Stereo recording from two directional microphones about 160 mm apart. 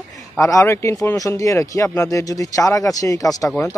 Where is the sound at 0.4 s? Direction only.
20° left (ahead or behind).